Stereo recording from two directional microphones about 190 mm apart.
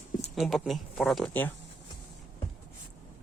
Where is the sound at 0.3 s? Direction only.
Centre (ahead or behind).